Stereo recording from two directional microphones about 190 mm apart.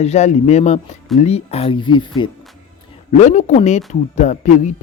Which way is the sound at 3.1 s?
40° left (ahead or behind).